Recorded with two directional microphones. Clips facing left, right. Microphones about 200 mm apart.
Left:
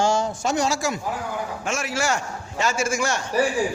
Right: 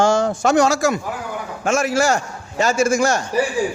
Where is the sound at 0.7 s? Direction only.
45° right (ahead or behind).